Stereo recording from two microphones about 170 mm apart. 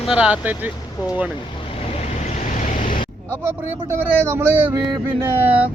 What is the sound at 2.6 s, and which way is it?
Vehicle, 45° left (ahead or behind).